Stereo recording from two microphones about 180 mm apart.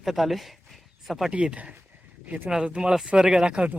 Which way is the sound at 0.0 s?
Centre (ahead or behind).